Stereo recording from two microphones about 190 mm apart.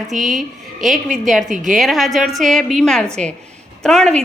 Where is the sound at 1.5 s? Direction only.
40° right (ahead or behind).